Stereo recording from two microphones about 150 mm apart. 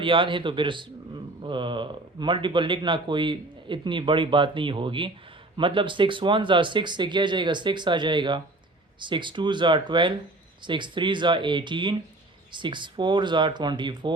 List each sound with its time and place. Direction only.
0.0 s speech: 35° right (ahead or behind)